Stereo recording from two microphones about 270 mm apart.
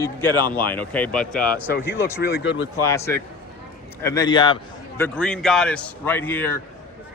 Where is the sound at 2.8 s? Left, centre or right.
Centre.